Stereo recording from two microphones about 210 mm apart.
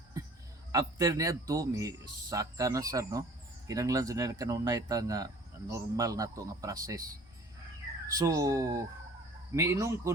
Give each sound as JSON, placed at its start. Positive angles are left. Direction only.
{"t": 0.7, "sound": "speech", "side_deg": -15}
{"t": 8.1, "sound": "speech", "side_deg": -15}